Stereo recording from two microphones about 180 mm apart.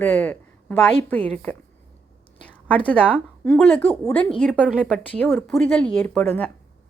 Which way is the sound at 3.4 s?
5° left (ahead or behind).